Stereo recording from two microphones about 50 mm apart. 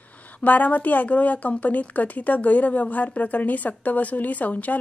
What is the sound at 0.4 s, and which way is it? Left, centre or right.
A woman's voice, left.